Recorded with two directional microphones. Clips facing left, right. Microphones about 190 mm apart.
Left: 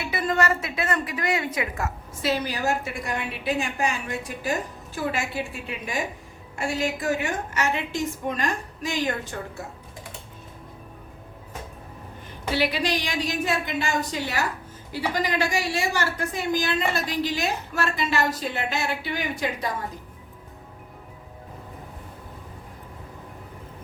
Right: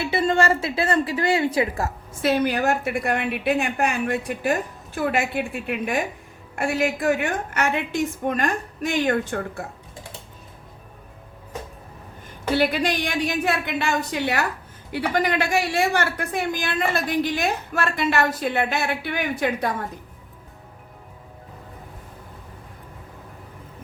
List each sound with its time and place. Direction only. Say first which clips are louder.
0.0 s a woman's voice: right 4 dB; 30° right (ahead or behind)
2.2 s a woman's voice: right 5 dB; 55° right (ahead or behind)
12.5 s a woman's voice: right 3 dB; 50° right (ahead or behind)